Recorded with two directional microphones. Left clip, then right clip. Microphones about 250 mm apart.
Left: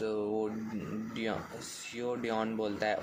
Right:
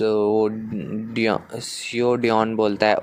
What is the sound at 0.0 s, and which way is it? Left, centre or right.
Speech, right.